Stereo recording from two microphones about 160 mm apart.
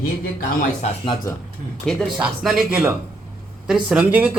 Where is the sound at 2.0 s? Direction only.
Centre (ahead or behind).